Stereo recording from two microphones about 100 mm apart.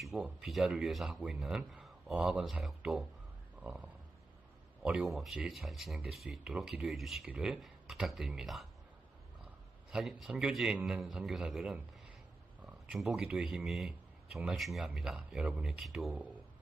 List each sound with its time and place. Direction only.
0.0 s speech: 5° right (ahead or behind)
9.9 s speech: 5° right (ahead or behind)
16.1 s speech: 15° right (ahead or behind)